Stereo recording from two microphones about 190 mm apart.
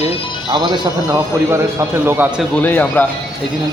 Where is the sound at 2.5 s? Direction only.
10° left (ahead or behind).